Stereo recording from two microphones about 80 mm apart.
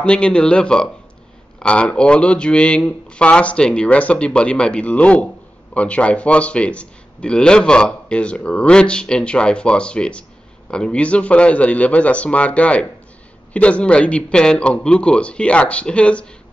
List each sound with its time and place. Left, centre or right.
0.0 s a man's voice: centre